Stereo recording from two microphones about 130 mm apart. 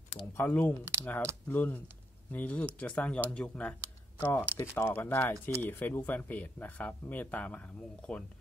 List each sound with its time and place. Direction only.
0.3 s speech: 15° left (ahead or behind)